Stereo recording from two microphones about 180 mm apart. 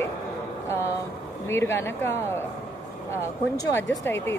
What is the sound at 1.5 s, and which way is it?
Speech, 15° left (ahead or behind).